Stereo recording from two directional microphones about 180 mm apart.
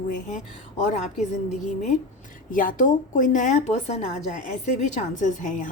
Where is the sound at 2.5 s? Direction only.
50° left (ahead or behind).